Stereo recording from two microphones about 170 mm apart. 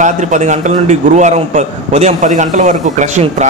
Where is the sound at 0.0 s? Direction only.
45° right (ahead or behind).